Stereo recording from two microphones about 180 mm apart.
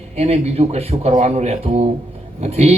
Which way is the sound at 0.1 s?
35° right (ahead or behind).